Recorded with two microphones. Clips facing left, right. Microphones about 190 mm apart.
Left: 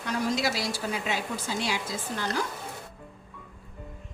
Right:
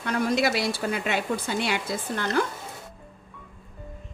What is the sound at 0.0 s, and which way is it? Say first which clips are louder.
A woman's voice: right 4 dB; 60° right (ahead or behind).